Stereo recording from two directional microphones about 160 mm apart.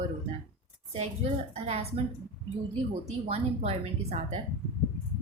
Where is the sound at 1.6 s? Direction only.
40° right (ahead or behind).